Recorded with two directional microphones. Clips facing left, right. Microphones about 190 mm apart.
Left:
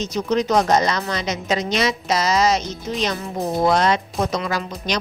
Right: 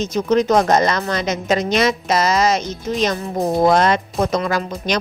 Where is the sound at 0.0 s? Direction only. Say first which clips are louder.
Right 4 dB; 50° right (ahead or behind).